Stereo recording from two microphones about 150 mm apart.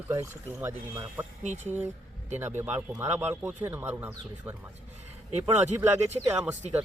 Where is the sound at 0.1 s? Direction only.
15° right (ahead or behind).